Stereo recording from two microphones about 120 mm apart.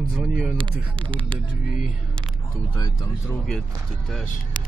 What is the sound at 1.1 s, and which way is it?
Speech, 45° right (ahead or behind).